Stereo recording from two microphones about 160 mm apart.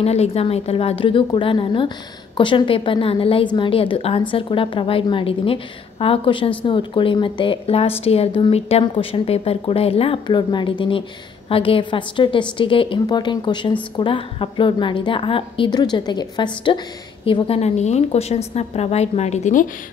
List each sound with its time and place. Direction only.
0.0 s a woman's voice: 40° left (ahead or behind)